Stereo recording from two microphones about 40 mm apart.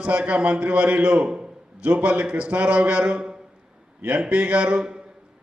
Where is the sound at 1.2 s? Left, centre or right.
Right.